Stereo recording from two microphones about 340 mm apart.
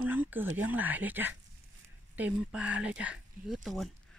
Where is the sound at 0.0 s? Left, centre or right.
Centre.